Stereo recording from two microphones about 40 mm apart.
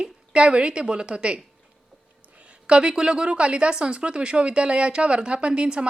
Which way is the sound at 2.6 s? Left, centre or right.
Right.